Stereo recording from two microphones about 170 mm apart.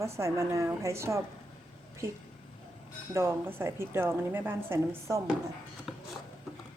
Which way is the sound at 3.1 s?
15° right (ahead or behind).